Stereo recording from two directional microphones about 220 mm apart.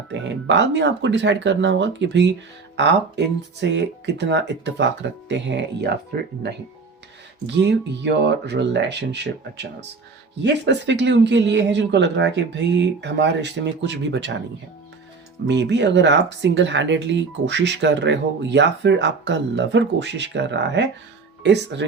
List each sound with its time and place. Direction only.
0.1 s speech: 55° right (ahead or behind)
15.4 s speech: 50° right (ahead or behind)